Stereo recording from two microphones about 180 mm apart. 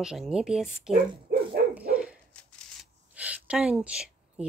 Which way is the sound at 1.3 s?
60° right (ahead or behind).